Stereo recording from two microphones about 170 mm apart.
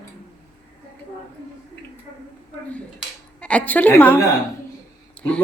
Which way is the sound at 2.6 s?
10° left (ahead or behind).